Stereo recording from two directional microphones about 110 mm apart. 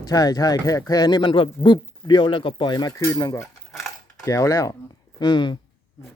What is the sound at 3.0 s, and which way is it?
Stir, 30° left (ahead or behind).